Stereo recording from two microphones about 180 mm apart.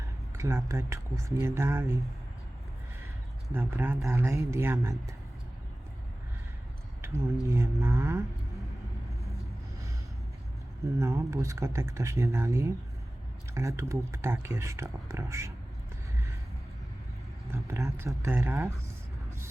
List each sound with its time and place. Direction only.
0.0 s speech: 15° right (ahead or behind)
3.5 s speech: 10° right (ahead or behind)
7.0 s a sound: 15° right (ahead or behind)
10.9 s speech: 15° right (ahead or behind)
17.5 s speech: 15° right (ahead or behind)